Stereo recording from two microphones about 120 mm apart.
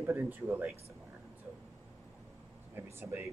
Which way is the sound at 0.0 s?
15° right (ahead or behind).